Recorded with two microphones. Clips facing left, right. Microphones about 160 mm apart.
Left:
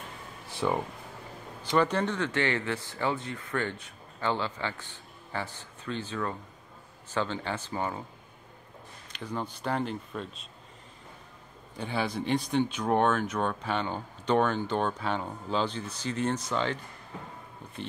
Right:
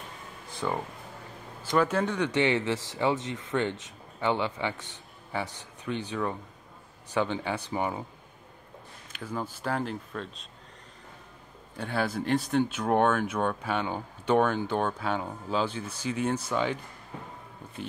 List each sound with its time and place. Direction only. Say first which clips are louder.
0.6 s speech: left 2 dB; 5° left (ahead or behind)
1.8 s speech: right 1 dB; 5° right (ahead or behind)
9.1 s speech: even; 5° right (ahead or behind)
11.7 s speech: right 1 dB; centre (ahead or behind)